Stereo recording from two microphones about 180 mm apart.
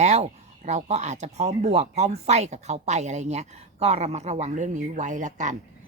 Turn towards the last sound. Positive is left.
turn(degrees=-45)  # may be behind; listen again after turning